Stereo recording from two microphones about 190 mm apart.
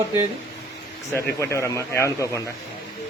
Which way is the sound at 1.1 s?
15° left (ahead or behind).